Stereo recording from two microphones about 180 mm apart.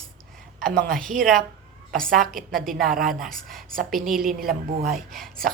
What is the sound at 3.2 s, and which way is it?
Speech, centre (ahead or behind).